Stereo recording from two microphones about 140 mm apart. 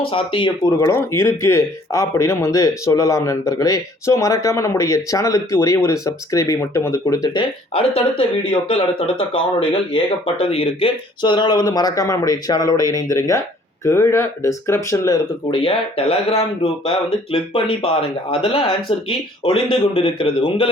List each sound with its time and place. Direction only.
0.1 s speech: 40° left (ahead or behind)
0.8 s speech: 20° left (ahead or behind)
7.7 s speech: 40° left (ahead or behind); by 15.2 s 20° left (ahead or behind)
15.4 s speech: 35° left (ahead or behind)